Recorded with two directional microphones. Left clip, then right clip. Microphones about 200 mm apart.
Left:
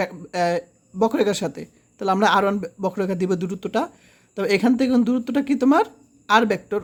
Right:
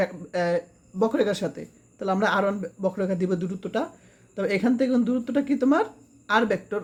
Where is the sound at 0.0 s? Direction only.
40° left (ahead or behind).